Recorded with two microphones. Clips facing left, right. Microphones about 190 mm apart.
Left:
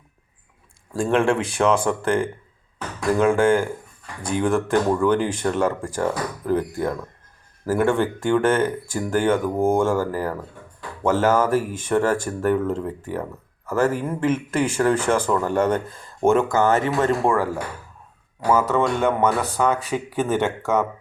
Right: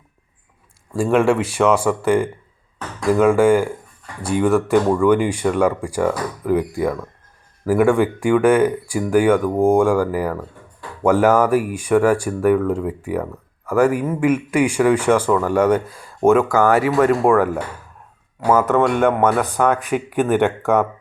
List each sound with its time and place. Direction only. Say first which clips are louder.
0.9 s speech: right 4 dB; 5° right (ahead or behind)
16.4 s speech: right 3 dB; 25° left (ahead or behind)
17.2 s speech: right 5 dB; 15° right (ahead or behind)
18.7 s speech: right 4 dB; 15° right (ahead or behind)